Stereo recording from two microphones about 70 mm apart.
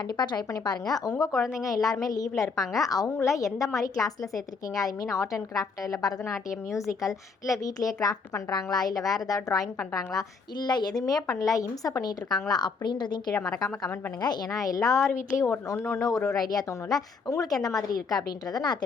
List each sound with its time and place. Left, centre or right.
0.2 s a woman's voice: left
0.6 s a woman's voice: left
1.6 s a woman's voice: left
3.1 s a woman's voice: left
6.2 s a woman's voice: left
10.2 s a woman's voice: left
13.4 s a woman's voice: centre
14.2 s a woman's voice: left
15.6 s speech: left
16.3 s a woman's voice: left
16.6 s a woman's voice: left